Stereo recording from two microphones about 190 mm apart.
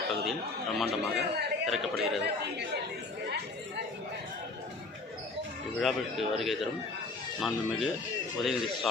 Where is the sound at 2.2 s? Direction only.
60° right (ahead or behind).